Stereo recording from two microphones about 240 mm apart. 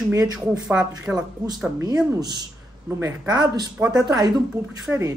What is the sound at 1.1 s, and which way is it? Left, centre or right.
A man's voice, centre.